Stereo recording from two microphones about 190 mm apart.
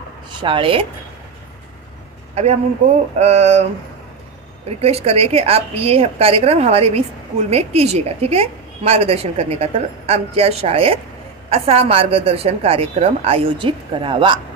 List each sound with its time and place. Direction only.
0.4 s a woman's voice: 25° right (ahead or behind)
3.2 s a woman's voice: 35° right (ahead or behind)
4.6 s a woman's voice: 30° right (ahead or behind)